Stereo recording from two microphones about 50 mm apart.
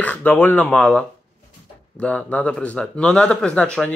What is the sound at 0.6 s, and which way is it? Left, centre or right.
Speech, left.